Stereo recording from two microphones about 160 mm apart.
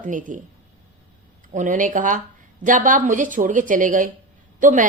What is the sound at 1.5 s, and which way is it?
A woman's voice, 55° right (ahead or behind).